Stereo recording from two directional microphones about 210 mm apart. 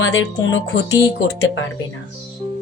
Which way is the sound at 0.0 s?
65° left (ahead or behind).